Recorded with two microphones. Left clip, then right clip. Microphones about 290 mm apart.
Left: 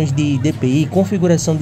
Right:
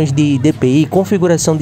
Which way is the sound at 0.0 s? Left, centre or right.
Centre.